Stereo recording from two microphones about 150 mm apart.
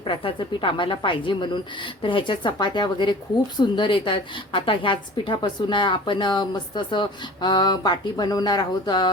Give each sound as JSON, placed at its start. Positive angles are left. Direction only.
{"t": 0.0, "sound": "a woman's voice", "side_deg": 35}